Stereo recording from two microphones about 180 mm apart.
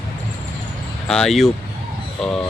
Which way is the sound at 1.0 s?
5° left (ahead or behind).